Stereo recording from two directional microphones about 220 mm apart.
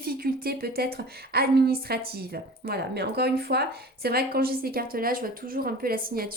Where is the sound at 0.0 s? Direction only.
40° right (ahead or behind).